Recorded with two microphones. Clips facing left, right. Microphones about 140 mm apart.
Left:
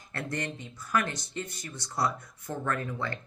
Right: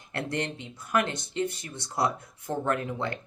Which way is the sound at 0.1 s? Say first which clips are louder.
Right 3 dB; 25° right (ahead or behind).